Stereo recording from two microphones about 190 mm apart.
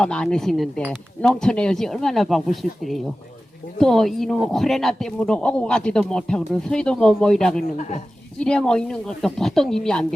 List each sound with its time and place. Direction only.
0.0 s speech: 5° left (ahead or behind)
7.8 s a woman's voice: 35° left (ahead or behind)
8.4 s speech: 5° left (ahead or behind)